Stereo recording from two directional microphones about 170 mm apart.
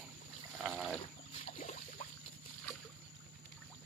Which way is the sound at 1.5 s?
45° left (ahead or behind).